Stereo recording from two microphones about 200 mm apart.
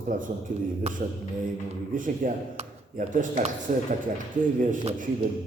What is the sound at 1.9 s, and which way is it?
A man's voice, 40° right (ahead or behind).